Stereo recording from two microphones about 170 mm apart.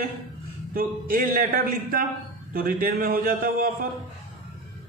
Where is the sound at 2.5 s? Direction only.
55° right (ahead or behind).